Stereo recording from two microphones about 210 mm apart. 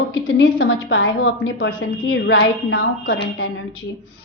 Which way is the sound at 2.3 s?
55° left (ahead or behind).